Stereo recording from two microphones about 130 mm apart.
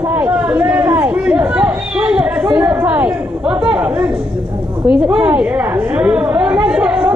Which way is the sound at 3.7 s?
10° right (ahead or behind).